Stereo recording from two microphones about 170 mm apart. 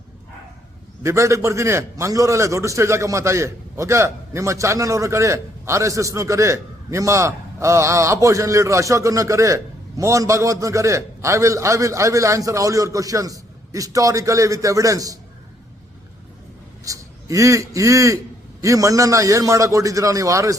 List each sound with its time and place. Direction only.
1.0 s a man's voice: 15° right (ahead or behind)
16.8 s a man's voice: 20° right (ahead or behind)